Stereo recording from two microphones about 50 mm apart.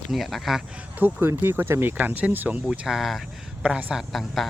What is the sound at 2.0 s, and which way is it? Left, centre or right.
Speech, right.